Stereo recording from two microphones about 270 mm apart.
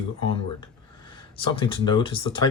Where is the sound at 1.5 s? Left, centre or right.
Centre.